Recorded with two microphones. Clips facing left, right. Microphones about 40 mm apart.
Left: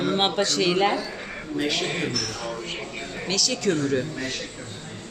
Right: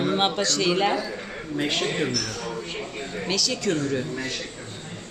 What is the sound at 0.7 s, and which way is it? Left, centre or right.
Speech, centre.